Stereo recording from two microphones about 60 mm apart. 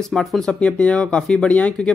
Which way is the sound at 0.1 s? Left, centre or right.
Centre.